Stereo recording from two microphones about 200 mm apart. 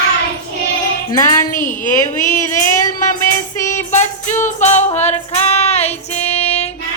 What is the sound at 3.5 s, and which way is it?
Music, 15° left (ahead or behind).